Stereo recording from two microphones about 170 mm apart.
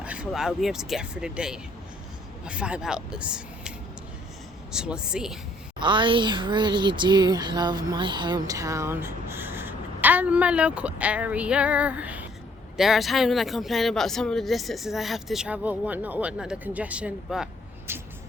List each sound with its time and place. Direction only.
0.0 s speech: 5° right (ahead or behind)
4.7 s speech: 5° right (ahead or behind)
5.8 s speech: 30° right (ahead or behind); by 17.5 s 5° right (ahead or behind)
17.9 s speech: 15° right (ahead or behind)